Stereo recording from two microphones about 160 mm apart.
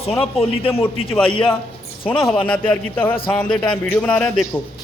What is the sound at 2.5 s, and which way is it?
A man's voice, 10° left (ahead or behind).